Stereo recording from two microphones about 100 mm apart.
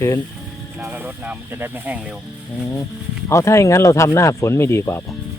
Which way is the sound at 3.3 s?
30° left (ahead or behind).